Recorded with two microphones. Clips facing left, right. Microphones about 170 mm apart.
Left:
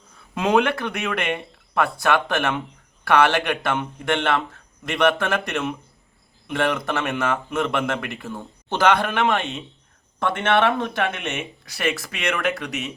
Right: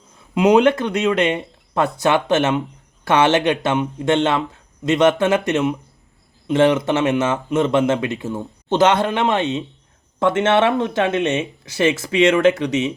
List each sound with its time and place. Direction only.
0.3 s speech: 20° right (ahead or behind)
10.2 s speech: 20° right (ahead or behind)